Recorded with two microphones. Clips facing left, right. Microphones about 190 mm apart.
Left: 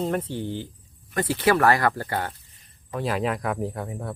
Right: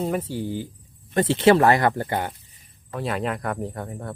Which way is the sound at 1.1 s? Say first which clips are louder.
Right 5 dB; 25° right (ahead or behind).